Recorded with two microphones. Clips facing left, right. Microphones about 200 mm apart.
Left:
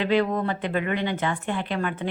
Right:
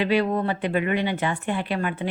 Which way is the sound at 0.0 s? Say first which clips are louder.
Right 1 dB; 10° right (ahead or behind).